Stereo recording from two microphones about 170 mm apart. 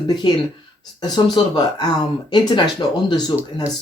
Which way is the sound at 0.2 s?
25° left (ahead or behind).